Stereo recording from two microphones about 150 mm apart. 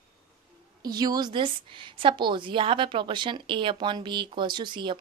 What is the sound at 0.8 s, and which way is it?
A woman's voice, 25° right (ahead or behind).